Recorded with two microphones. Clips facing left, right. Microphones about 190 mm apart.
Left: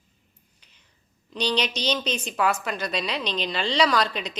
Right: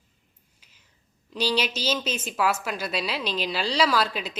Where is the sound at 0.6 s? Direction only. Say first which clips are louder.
Right 2 dB; 5° right (ahead or behind).